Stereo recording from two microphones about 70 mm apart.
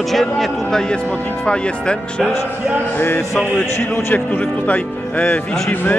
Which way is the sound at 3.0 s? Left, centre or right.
Left.